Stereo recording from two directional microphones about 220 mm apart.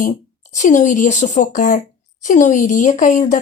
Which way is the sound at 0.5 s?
35° left (ahead or behind).